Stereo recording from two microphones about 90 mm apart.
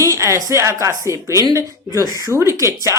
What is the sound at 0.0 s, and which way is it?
Speech, 35° right (ahead or behind).